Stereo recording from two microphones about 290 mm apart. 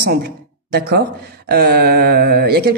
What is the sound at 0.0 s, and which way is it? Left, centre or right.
A man's voice, right.